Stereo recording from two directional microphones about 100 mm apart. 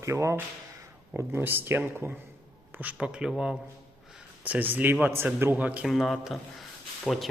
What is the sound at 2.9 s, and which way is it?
Speech, 10° right (ahead or behind).